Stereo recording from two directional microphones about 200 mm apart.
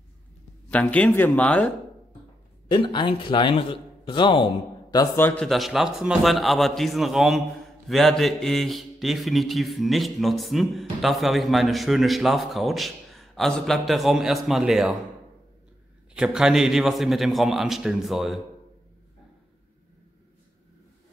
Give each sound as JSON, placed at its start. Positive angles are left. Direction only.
{"t": 0.7, "sound": "speech", "side_deg": 5}
{"t": 2.7, "sound": "a man's voice", "side_deg": 25}
{"t": 4.9, "sound": "speech", "side_deg": 10}
{"t": 16.2, "sound": "speech", "side_deg": -5}